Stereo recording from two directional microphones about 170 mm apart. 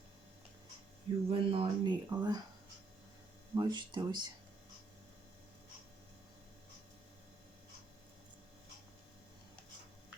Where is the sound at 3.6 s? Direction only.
25° right (ahead or behind).